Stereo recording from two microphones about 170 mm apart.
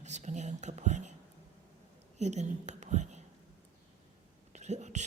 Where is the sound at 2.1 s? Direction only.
40° right (ahead or behind).